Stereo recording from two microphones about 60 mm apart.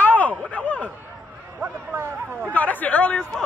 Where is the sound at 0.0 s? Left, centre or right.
Left.